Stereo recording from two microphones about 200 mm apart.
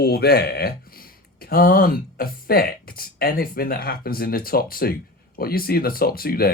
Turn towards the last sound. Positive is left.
turn(degrees=50)  # may be behind; listen again after turning